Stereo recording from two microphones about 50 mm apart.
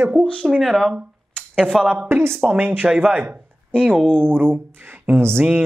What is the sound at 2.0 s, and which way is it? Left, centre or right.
Speech, right.